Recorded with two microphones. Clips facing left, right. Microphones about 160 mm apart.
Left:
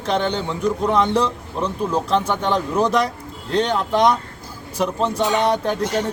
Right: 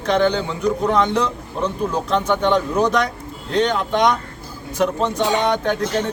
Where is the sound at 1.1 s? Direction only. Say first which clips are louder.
Left 1 dB; 30° left (ahead or behind).